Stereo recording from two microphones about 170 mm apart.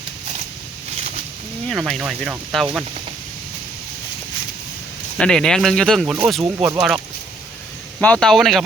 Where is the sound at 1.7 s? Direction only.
Centre (ahead or behind).